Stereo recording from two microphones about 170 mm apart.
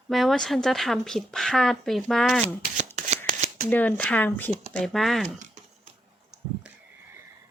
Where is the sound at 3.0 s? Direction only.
45° right (ahead or behind).